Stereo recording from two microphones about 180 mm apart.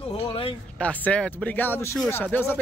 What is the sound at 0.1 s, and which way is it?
Speech, 30° left (ahead or behind).